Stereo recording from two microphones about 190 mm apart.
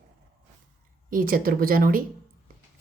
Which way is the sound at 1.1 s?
50° right (ahead or behind).